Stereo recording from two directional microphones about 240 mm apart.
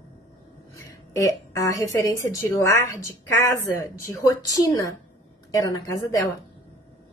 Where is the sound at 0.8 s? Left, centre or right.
Centre.